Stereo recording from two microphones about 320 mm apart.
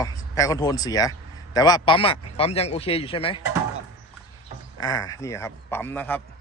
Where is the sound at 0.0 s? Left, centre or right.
Centre.